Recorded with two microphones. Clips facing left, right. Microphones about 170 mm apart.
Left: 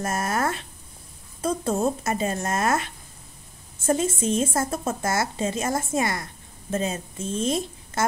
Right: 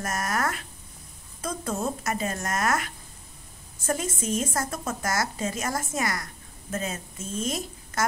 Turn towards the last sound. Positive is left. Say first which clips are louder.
# left 5 dB
turn(degrees=25)  # may be behind; listen again after turning